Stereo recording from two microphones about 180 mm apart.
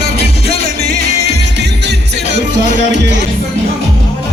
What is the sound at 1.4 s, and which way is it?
Music, 70° right (ahead or behind).